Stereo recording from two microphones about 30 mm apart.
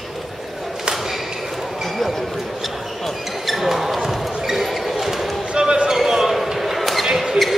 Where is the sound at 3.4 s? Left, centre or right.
Centre.